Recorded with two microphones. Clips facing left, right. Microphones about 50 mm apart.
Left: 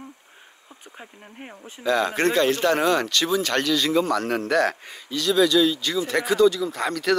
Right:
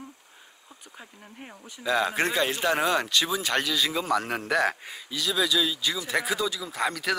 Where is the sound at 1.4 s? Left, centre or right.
Left.